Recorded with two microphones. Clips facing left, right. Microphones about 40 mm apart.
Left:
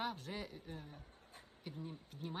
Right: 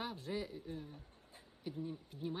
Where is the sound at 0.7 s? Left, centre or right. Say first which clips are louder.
Right 4 dB; left.